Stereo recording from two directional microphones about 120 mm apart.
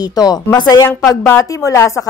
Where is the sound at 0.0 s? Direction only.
35° left (ahead or behind).